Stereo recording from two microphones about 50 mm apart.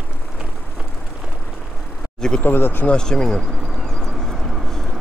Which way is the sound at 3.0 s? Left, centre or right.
Centre.